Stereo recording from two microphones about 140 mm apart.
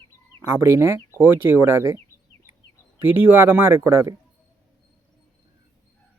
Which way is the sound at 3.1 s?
15° right (ahead or behind).